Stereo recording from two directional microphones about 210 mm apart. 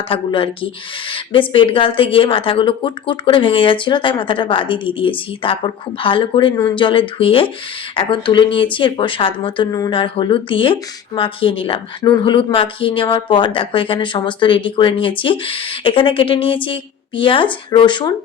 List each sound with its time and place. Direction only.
0.1 s speech: 25° left (ahead or behind)